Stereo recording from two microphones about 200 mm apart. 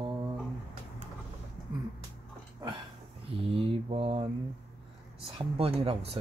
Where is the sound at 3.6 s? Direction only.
30° right (ahead or behind).